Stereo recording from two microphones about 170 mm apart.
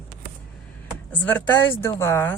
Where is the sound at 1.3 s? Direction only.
10° left (ahead or behind).